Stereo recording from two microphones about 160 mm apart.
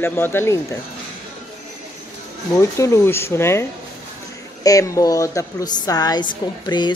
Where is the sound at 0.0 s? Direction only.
15° left (ahead or behind).